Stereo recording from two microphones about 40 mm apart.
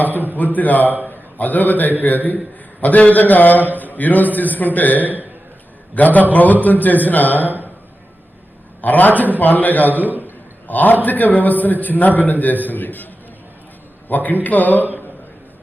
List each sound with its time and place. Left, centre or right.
0.3 s a man's voice: left
5.0 s a man's voice: right
5.9 s a man's voice: left
8.8 s a man's voice: left
14.1 s a man's voice: left